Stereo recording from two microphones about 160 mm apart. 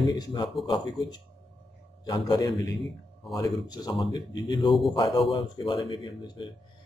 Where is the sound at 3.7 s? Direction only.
25° left (ahead or behind).